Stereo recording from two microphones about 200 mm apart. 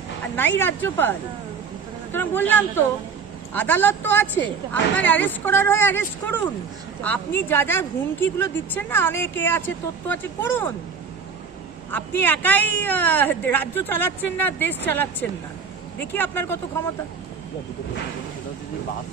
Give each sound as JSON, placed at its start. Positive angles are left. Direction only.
{"t": 0.6, "sound": "speech", "side_deg": 10}
{"t": 2.1, "sound": "speech", "side_deg": 10}
{"t": 11.9, "sound": "speech", "side_deg": 10}